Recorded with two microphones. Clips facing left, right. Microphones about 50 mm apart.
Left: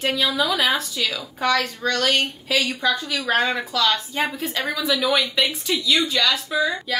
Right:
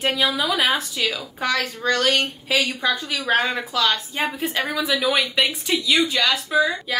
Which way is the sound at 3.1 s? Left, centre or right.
Right.